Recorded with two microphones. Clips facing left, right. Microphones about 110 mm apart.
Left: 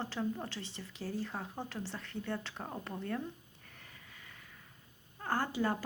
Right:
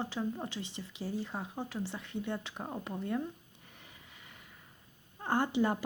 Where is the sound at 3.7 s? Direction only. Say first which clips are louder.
Even; 20° right (ahead or behind).